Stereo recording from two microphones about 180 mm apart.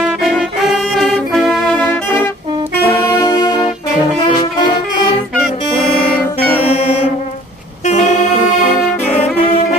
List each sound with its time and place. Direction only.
0.0 s brass instrument: 5° right (ahead or behind)
7.8 s saxophone: 40° left (ahead or behind)